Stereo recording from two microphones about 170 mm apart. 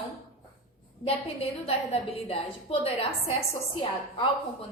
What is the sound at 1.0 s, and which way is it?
A woman's voice, 35° left (ahead or behind).